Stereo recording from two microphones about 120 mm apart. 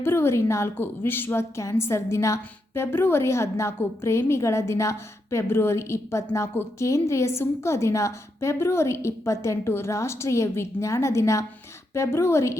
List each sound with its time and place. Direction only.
0.0 s a woman's voice: 20° left (ahead or behind)